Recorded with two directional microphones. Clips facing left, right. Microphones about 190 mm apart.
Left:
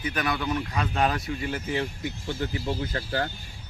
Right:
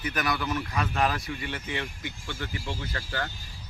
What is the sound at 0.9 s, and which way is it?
Speech, 30° left (ahead or behind).